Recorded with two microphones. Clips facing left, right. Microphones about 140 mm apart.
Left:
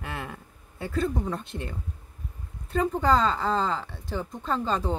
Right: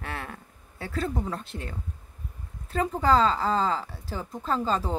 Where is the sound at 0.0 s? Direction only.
Centre (ahead or behind).